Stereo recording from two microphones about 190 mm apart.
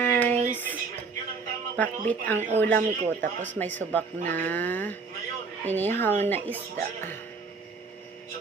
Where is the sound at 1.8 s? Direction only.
10° left (ahead or behind).